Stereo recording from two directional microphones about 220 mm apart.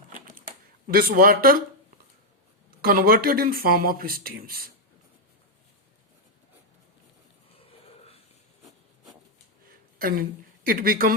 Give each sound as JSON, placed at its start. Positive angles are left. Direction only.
{"t": 0.1, "sound": "typing", "side_deg": -40}
{"t": 0.9, "sound": "a man's voice", "side_deg": -45}
{"t": 2.6, "sound": "speech", "side_deg": -40}
{"t": 10.0, "sound": "a woman's voice", "side_deg": -40}